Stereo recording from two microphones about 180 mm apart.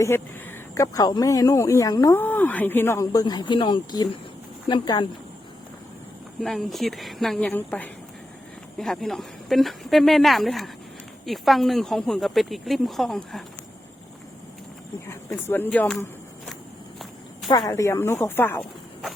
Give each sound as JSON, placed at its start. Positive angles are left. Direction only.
{"t": 0.7, "sound": "speech", "side_deg": 20}
{"t": 6.4, "sound": "speech", "side_deg": 0}
{"t": 15.0, "sound": "speech", "side_deg": 15}
{"t": 17.7, "sound": "speech", "side_deg": 15}